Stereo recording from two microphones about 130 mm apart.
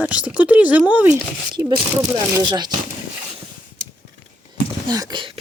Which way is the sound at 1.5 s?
35° right (ahead or behind).